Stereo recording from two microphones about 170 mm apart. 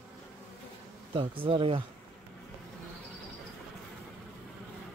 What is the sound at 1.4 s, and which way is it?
Speech, 30° right (ahead or behind).